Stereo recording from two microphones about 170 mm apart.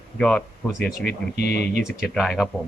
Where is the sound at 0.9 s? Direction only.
65° left (ahead or behind).